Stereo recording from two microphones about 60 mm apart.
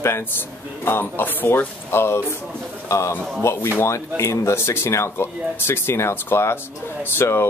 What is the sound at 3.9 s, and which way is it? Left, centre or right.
Speech, left.